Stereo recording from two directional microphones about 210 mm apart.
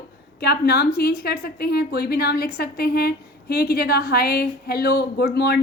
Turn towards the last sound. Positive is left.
turn(degrees=50)  # may be behind; listen again after turning